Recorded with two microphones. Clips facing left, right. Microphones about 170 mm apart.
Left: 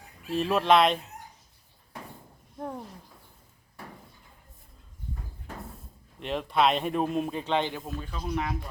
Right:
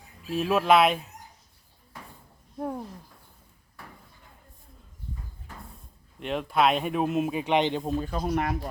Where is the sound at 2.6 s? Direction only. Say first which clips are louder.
Right 4 dB; 5° right (ahead or behind).